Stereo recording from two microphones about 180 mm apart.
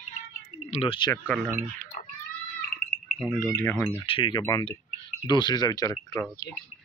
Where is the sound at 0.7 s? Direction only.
40° left (ahead or behind).